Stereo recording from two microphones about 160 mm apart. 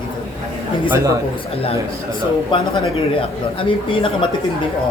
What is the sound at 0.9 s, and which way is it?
Speech, 20° right (ahead or behind).